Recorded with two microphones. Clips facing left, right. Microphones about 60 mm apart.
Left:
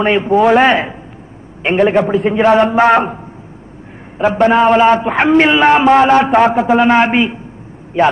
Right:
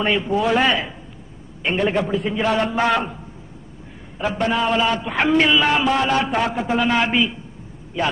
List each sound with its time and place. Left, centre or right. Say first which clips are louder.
0.0 s a man's voice: left 9 dB; left
2.0 s a man's voice: left 9 dB; left
4.2 s a man's voice: left 10 dB; left